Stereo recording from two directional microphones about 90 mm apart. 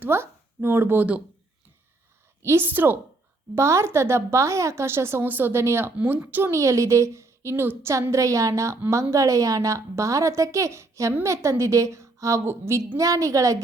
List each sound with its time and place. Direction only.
0.0 s speech: 25° right (ahead or behind)
2.4 s a woman's voice: 25° right (ahead or behind)
6.0 s a woman's voice: 20° right (ahead or behind); by 13.6 s 40° right (ahead or behind)